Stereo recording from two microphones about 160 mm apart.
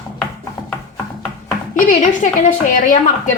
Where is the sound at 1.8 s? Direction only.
55° left (ahead or behind).